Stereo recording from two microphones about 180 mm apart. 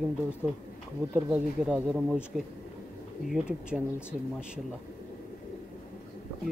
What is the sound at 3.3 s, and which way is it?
Speech, 5° right (ahead or behind).